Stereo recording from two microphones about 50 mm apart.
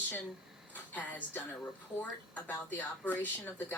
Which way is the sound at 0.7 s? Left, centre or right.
Left.